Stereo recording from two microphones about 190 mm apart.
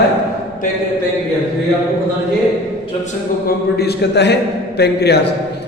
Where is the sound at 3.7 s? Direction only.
60° left (ahead or behind).